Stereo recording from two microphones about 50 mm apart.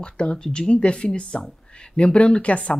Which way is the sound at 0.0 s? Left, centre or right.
Centre.